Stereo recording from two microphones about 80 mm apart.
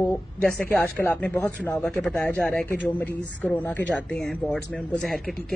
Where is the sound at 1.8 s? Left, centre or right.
Centre.